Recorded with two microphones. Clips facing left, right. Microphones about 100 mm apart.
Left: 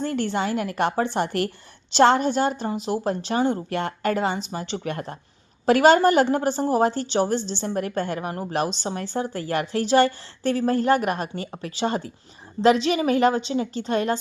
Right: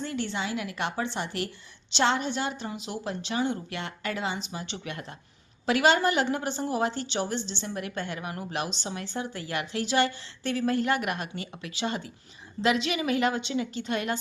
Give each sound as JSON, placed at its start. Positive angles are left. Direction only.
{"t": 0.0, "sound": "a woman's voice", "side_deg": 50}